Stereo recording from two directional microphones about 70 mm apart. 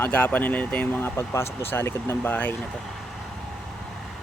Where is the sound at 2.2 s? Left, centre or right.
Left.